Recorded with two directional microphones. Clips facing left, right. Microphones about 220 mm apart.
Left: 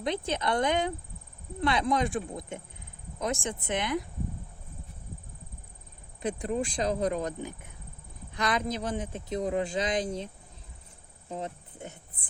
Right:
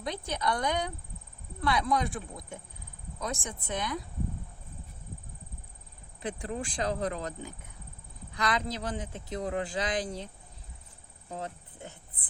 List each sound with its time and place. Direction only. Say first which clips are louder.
0.0 s speech: left 3 dB; 25° left (ahead or behind)
6.2 s speech: left 5 dB; 20° left (ahead or behind)
11.3 s music: left 2 dB; 20° left (ahead or behind)